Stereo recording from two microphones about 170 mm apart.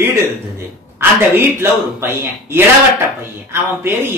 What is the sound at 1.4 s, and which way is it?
Speech, 15° right (ahead or behind).